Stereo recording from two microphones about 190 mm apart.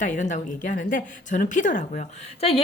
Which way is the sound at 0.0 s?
40° left (ahead or behind).